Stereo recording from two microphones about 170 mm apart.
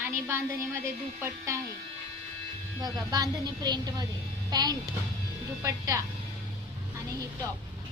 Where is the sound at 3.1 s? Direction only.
25° right (ahead or behind).